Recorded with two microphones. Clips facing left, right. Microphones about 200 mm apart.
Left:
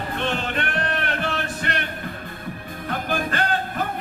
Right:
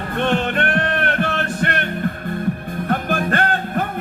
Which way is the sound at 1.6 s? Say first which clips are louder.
Right 7 dB; 55° right (ahead or behind).